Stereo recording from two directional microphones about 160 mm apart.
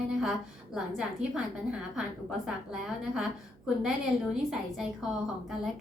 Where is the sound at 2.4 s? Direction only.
5° right (ahead or behind).